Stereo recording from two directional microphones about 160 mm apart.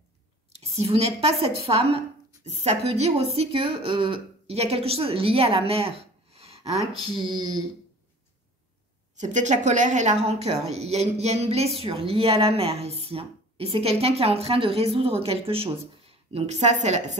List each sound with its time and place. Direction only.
0.6 s speech: 40° right (ahead or behind)
9.2 s a woman's voice: 50° right (ahead or behind)